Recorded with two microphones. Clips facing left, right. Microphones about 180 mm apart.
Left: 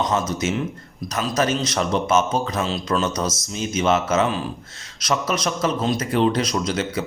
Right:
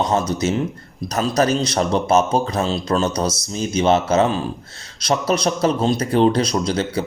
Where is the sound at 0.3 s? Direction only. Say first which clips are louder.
Right 3 dB; 35° right (ahead or behind).